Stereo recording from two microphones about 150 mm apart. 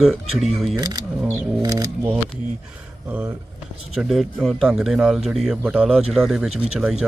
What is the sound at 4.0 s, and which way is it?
Speech, centre (ahead or behind).